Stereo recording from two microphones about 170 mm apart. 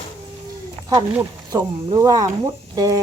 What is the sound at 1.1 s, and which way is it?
Speech, 10° right (ahead or behind).